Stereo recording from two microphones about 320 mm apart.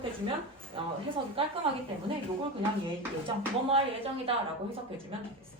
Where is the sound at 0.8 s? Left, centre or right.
Centre.